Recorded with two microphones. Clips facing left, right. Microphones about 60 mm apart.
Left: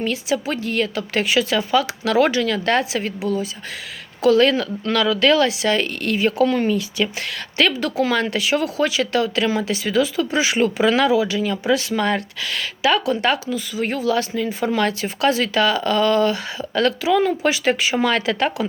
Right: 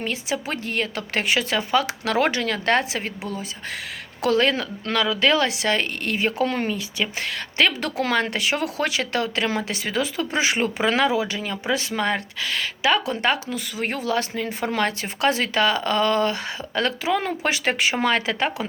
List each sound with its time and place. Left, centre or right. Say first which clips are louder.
0.0 s speech: left 5 dB; right
4.4 s speech: left 5 dB; right
5.5 s speech: left 3 dB; right
7.8 s speech: left 3 dB; right
13.5 s speech: left 4 dB; right
13.9 s speech: left 4 dB; right
17.9 s speech: left 3 dB; right